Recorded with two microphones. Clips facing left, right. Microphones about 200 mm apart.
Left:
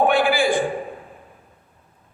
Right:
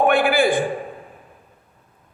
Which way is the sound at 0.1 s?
55° right (ahead or behind).